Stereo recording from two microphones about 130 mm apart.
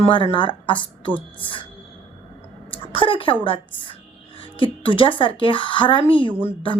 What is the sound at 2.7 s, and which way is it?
A woman's voice, 45° left (ahead or behind).